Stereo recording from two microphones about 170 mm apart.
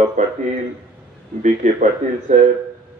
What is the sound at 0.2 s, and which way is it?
Speech, 45° right (ahead or behind).